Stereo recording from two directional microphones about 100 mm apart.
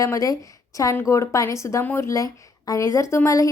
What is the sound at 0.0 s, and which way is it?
A woman's voice, 35° left (ahead or behind).